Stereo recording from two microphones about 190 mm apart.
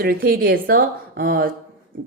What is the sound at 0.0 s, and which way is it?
A woman's voice, 50° right (ahead or behind).